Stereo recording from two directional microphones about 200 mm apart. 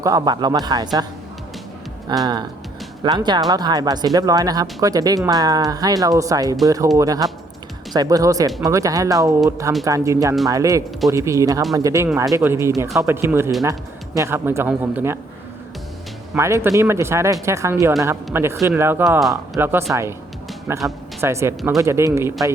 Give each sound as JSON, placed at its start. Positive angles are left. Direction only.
{"t": 0.0, "sound": "speech", "side_deg": -20}
{"t": 2.2, "sound": "speech", "side_deg": -20}
{"t": 16.3, "sound": "speech", "side_deg": -15}
{"t": 19.0, "sound": "speech", "side_deg": 0}